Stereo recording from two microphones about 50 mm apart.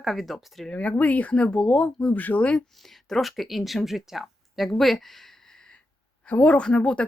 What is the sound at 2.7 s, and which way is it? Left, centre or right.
Speech, centre.